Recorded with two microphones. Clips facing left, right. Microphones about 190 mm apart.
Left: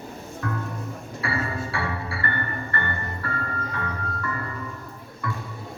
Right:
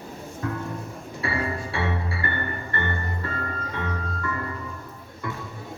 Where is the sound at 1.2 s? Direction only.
25° right (ahead or behind).